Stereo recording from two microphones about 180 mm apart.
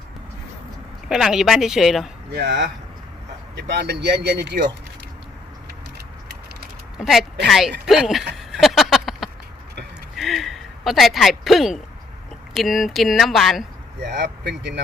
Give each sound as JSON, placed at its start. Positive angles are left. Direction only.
{"t": 1.0, "sound": "speech", "side_deg": 0}
{"t": 2.3, "sound": "speech", "side_deg": -70}
{"t": 6.9, "sound": "speech", "side_deg": 0}
{"t": 8.6, "sound": "a sound", "side_deg": 0}
{"t": 12.5, "sound": "speech", "side_deg": 0}
{"t": 14.0, "sound": "speech", "side_deg": -70}